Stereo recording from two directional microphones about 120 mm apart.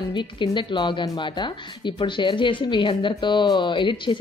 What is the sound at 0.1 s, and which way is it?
Speech, 40° left (ahead or behind).